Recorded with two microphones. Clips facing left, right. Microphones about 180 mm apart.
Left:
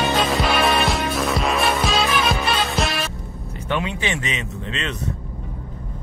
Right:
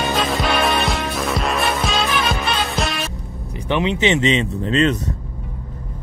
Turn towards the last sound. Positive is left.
turn(degrees=-40)  # may be behind; listen again after turning